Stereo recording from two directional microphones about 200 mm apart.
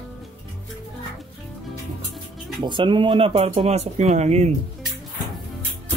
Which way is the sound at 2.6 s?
25° right (ahead or behind).